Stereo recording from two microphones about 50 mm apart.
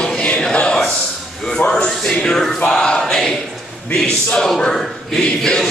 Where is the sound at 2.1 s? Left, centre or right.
Centre.